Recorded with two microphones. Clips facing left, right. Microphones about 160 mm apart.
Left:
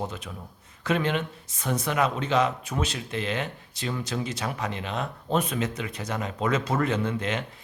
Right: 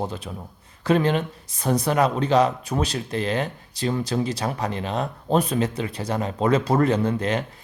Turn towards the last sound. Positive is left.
turn(degrees=-35)  # may be behind; listen again after turning